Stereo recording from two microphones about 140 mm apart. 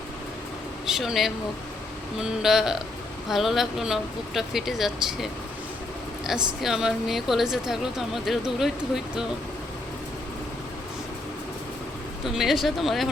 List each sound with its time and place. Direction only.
0.9 s speech: 5° right (ahead or behind)
6.6 s speech: 5° right (ahead or behind)
12.2 s speech: centre (ahead or behind)